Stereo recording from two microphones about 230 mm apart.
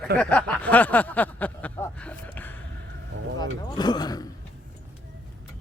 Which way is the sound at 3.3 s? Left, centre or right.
Centre.